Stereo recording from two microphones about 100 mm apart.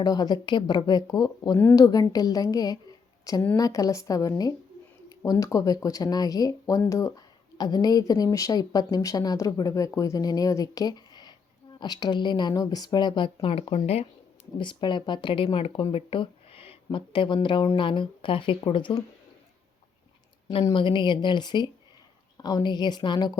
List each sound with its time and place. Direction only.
0.0 s a woman's voice: 45° left (ahead or behind)
7.6 s a woman's voice: 40° left (ahead or behind)
13.4 s speech: 75° left (ahead or behind); by 14.1 s 90° left
14.6 s speech: 50° left (ahead or behind)
20.7 s speech: 55° left (ahead or behind)